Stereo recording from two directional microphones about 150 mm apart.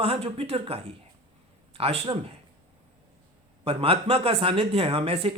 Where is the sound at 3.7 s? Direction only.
40° right (ahead or behind).